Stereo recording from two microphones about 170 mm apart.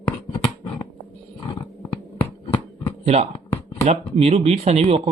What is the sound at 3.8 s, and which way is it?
Speech, 40° right (ahead or behind).